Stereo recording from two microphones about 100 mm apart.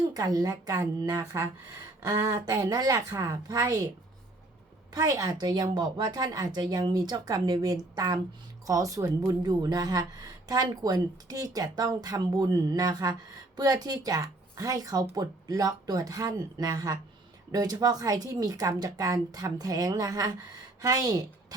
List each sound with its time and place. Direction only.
0.1 s a woman's voice: 40° right (ahead or behind)
4.9 s a woman's voice: 40° right (ahead or behind)